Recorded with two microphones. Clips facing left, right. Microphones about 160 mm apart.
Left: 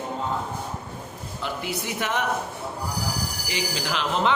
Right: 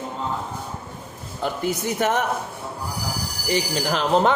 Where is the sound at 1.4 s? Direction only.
45° right (ahead or behind).